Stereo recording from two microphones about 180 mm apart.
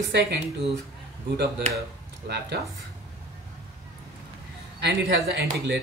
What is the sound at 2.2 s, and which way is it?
Speech, 65° right (ahead or behind).